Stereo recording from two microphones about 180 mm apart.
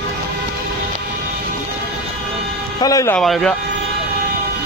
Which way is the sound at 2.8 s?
20° left (ahead or behind).